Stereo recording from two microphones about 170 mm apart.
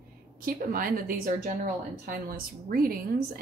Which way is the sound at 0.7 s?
55° right (ahead or behind).